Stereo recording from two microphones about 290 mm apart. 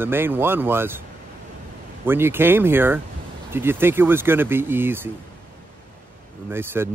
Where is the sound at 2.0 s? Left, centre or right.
Centre.